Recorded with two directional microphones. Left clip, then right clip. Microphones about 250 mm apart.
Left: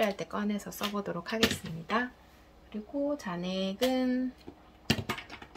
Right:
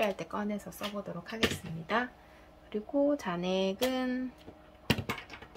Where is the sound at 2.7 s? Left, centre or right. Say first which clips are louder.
Right 4 dB; centre.